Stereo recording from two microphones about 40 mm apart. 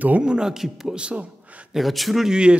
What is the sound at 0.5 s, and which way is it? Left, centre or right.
Speech, centre.